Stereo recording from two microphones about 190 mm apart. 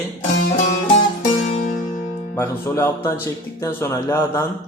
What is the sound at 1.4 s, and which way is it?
Music, 45° left (ahead or behind).